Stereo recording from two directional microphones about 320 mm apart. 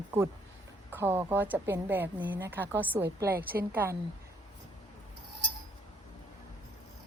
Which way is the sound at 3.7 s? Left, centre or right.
Centre.